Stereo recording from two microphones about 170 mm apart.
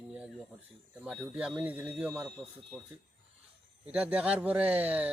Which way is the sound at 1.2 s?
10° right (ahead or behind).